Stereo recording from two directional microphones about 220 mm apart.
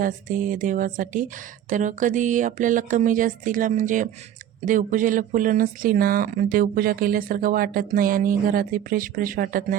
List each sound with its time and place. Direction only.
0.0 s speech: 35° right (ahead or behind)